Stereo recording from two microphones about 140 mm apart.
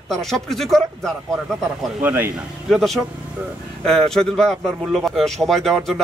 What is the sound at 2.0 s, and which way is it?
Speech, 15° right (ahead or behind).